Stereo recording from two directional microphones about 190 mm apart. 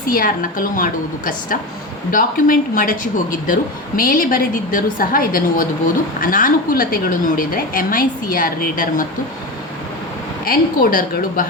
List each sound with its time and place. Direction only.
0.1 s speech: 45° left (ahead or behind)
10.4 s speech: 50° left (ahead or behind)